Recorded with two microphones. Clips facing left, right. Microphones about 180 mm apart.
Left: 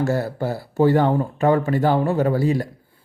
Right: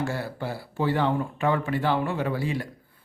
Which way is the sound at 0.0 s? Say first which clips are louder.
Left 8 dB; 45° left (ahead or behind).